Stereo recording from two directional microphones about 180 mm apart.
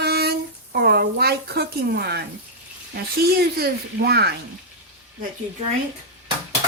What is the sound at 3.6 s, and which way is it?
Speech, 65° right (ahead or behind).